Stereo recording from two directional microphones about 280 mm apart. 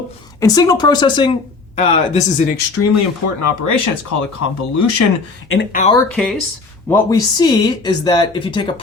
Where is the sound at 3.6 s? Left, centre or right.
Left.